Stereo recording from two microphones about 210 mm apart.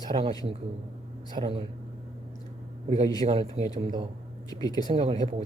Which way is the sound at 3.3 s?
30° right (ahead or behind).